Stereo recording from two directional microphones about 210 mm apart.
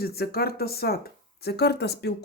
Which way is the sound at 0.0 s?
45° left (ahead or behind).